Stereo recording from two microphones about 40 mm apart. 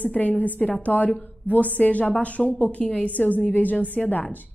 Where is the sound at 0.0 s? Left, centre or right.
Left.